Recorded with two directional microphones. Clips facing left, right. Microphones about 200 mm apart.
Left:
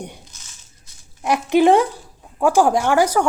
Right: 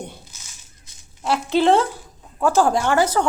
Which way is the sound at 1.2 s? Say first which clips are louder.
Left 3 dB; 15° left (ahead or behind).